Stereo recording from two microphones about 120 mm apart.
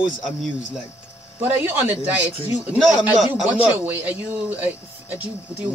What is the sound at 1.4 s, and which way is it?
Speech, 20° right (ahead or behind).